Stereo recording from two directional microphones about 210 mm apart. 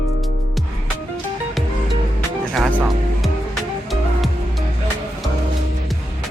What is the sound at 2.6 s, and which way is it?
Music, 5° left (ahead or behind).